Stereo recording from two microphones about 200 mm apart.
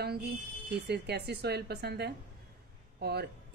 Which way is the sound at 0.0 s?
55° right (ahead or behind).